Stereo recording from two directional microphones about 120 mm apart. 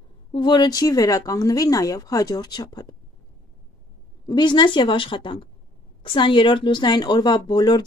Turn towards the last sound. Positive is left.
turn(degrees=35)  # may be behind; listen again after turning